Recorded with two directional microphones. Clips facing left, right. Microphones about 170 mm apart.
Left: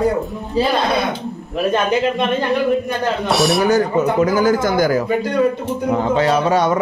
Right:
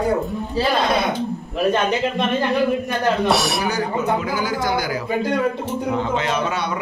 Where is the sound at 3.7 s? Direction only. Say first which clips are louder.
Left 6 dB; 45° left (ahead or behind).